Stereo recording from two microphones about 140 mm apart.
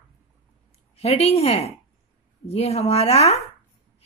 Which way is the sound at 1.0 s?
45° left (ahead or behind).